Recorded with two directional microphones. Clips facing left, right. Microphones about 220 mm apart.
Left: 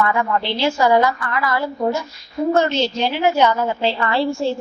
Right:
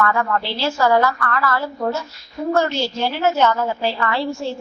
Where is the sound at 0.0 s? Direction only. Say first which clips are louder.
Left 1 dB; 15° left (ahead or behind).